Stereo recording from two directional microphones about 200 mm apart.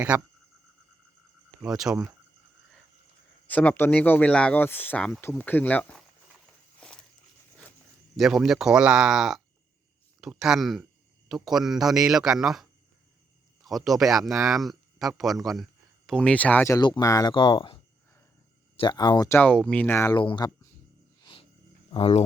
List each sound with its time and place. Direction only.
0.1 s speech: 5° right (ahead or behind)
1.6 s speech: 5° right (ahead or behind)
3.4 s speech: 5° left (ahead or behind)
6.7 s walk: 5° left (ahead or behind)
8.1 s speech: centre (ahead or behind); by 17.7 s 25° left (ahead or behind)
18.8 s speech: 20° left (ahead or behind)
21.8 s speech: 30° left (ahead or behind)